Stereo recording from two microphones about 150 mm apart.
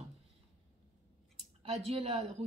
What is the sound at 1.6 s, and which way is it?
Speech, 45° right (ahead or behind).